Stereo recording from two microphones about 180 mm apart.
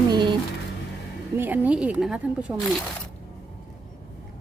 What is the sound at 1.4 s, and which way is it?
A woman's voice, 10° right (ahead or behind).